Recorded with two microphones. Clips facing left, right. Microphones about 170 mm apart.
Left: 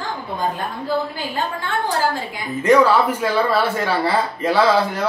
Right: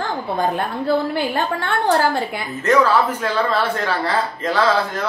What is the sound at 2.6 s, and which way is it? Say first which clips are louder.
Speech: left 2 dB; 10° left (ahead or behind).